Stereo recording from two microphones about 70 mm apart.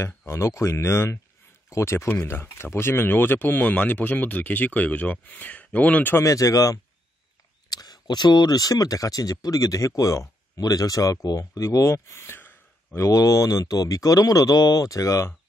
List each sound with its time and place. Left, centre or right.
0.3 s speech: left; by 6.0 s centre
6.2 s speech: left
7.7 s speech: left
10.6 s speech: left
12.9 s speech: left